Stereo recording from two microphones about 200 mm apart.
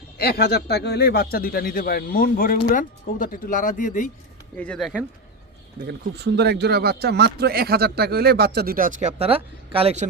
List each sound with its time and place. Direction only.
0.2 s speech: 50° left (ahead or behind)
4.5 s speech: 5° left (ahead or behind)
5.9 s speech: 55° right (ahead or behind); by 10.1 s 30° right (ahead or behind)